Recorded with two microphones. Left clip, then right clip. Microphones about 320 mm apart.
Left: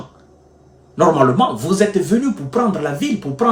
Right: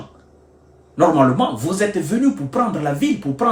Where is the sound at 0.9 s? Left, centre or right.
Centre.